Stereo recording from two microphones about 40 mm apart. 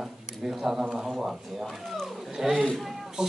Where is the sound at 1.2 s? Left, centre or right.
Centre.